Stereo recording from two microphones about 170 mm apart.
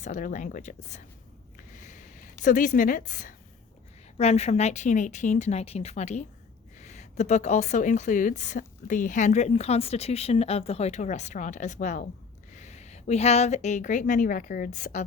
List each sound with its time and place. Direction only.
0.0 s a woman's voice: 50° left (ahead or behind)
1.5 s a sound: 50° left (ahead or behind)
4.2 s a woman's voice: 40° left (ahead or behind)